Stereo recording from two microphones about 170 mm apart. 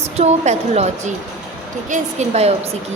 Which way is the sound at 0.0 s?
40° right (ahead or behind).